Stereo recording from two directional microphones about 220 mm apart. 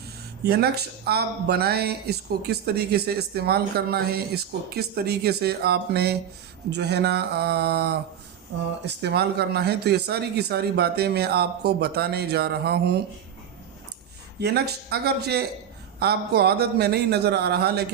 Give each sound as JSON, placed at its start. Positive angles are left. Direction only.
{"t": 0.4, "sound": "speech", "side_deg": -45}
{"t": 14.3, "sound": "speech", "side_deg": -45}